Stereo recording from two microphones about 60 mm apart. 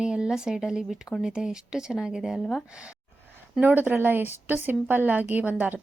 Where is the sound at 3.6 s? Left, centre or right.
Right.